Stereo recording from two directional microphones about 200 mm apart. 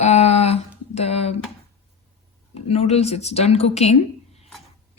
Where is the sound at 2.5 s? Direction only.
30° left (ahead or behind).